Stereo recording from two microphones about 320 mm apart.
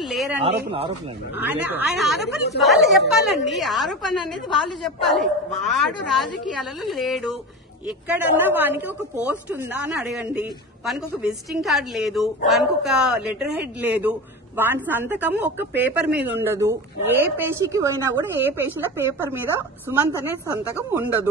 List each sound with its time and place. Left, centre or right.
0.1 s a sound: centre
0.7 s a woman's voice: centre
1.4 s a woman's voice: centre